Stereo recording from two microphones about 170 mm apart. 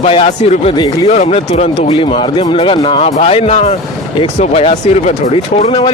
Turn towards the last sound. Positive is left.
turn(degrees=35)  # may be behind; listen again after turning